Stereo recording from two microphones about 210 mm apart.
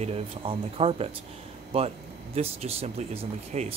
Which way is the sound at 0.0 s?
30° right (ahead or behind).